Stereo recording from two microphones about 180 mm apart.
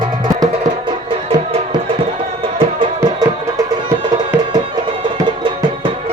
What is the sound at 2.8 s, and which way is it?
Music, 20° right (ahead or behind).